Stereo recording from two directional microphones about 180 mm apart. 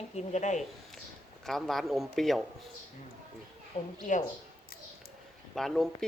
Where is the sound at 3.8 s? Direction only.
40° left (ahead or behind).